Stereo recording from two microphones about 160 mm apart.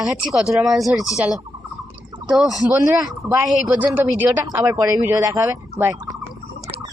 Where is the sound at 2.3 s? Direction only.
Centre (ahead or behind); by 5.5 s 20° right (ahead or behind).